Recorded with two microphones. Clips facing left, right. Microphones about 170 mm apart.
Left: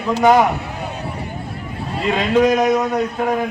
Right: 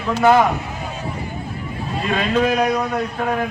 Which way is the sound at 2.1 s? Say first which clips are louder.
Left 3 dB; 15° left (ahead or behind).